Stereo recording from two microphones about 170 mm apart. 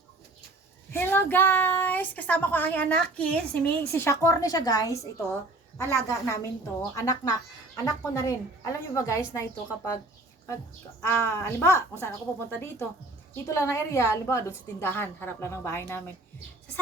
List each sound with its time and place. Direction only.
0.9 s a woman's voice: 10° left (ahead or behind)
11.0 s a woman's voice: 15° left (ahead or behind)